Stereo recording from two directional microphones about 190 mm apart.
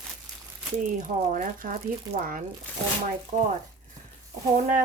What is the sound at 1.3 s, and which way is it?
Speech, 45° right (ahead or behind).